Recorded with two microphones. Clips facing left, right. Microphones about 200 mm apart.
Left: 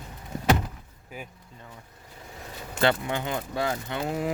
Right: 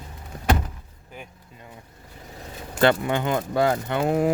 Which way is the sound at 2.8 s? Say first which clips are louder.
Right 5 dB; 60° right (ahead or behind).